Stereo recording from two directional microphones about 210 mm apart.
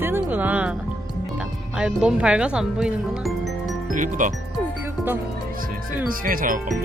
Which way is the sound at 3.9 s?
40° right (ahead or behind).